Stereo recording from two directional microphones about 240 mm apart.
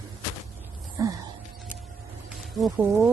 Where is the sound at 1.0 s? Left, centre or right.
Centre.